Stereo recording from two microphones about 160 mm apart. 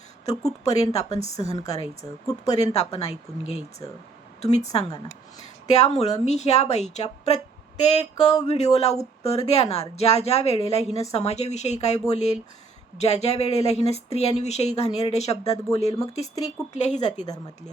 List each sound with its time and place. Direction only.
0.6 s speech: 45° left (ahead or behind)
2.0 s speech: 20° left (ahead or behind)
2.5 s speech: 40° left (ahead or behind)